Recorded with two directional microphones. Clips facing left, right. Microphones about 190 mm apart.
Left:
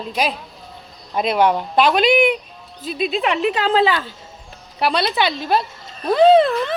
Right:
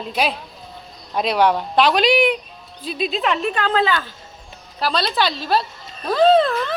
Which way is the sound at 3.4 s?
25° left (ahead or behind).